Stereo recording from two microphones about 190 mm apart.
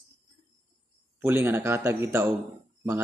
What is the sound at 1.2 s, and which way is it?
A man's voice, 10° right (ahead or behind).